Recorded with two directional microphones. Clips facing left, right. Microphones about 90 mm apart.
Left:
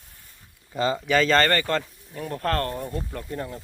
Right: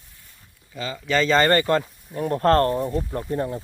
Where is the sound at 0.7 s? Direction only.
35° left (ahead or behind).